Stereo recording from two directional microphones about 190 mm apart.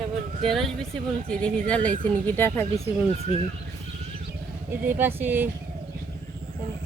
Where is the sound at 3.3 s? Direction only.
35° left (ahead or behind).